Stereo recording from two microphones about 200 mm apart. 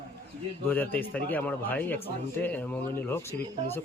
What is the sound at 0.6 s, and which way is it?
Speech, 10° left (ahead or behind).